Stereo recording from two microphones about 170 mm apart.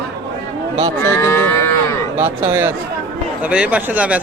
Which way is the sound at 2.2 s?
10° right (ahead or behind).